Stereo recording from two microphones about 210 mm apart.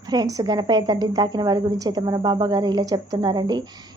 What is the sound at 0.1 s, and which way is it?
A woman's voice, 15° right (ahead or behind).